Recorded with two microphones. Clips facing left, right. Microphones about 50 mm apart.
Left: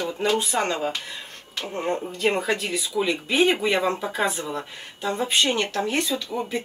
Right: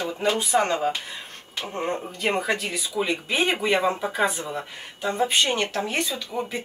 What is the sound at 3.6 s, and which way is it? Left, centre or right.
Speech, right.